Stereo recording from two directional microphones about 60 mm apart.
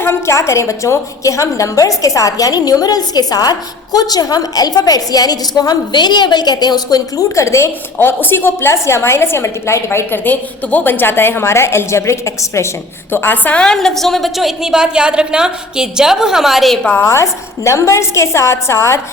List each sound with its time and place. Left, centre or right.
0.0 s a woman's voice: left
0.3 s a woman's voice: left
7.9 s a woman's voice: left
10.2 s a woman's voice: left
13.7 s a woman's voice: centre
17.0 s a woman's voice: left